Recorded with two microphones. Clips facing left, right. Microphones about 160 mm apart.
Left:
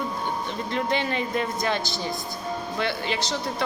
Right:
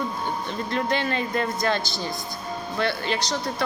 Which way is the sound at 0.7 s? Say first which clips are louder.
Right 1 dB; 20° left (ahead or behind).